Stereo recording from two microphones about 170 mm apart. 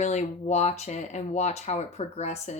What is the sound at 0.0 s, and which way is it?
Speech, 40° left (ahead or behind).